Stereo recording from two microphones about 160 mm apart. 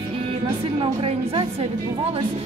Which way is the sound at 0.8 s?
35° right (ahead or behind).